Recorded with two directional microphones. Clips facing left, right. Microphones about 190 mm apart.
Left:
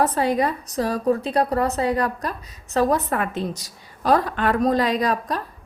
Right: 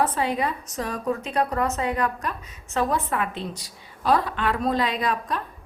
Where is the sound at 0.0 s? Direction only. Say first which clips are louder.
Left 4 dB; 40° left (ahead or behind).